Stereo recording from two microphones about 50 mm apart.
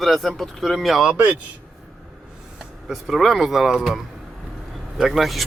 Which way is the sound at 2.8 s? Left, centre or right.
Centre.